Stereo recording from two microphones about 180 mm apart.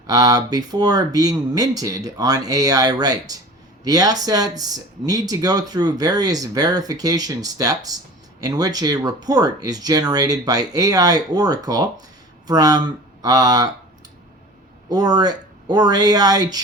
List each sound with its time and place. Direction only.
0.1 s speech: 20° right (ahead or behind)
14.8 s speech: 20° right (ahead or behind)